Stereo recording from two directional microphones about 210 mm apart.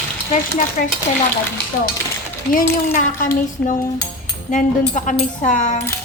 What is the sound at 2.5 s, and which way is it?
Speech, 40° left (ahead or behind).